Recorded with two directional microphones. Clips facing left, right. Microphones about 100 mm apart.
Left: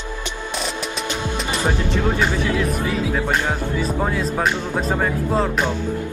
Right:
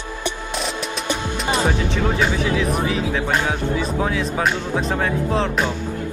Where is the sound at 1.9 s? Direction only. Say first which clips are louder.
Even; centre (ahead or behind).